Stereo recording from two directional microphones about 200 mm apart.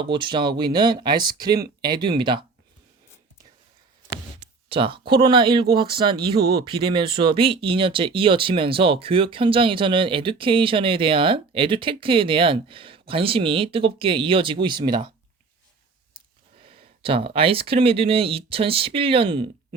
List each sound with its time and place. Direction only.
0.0 s speech: 25° right (ahead or behind)
4.7 s speech: 25° right (ahead or behind)
16.1 s speech: 25° right (ahead or behind)